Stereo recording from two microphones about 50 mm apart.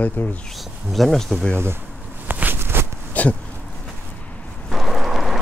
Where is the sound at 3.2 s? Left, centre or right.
Left.